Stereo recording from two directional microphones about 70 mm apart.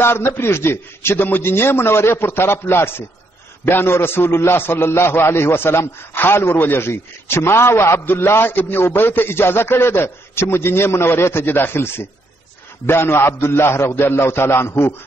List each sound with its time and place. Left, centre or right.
0.0 s a man's voice: left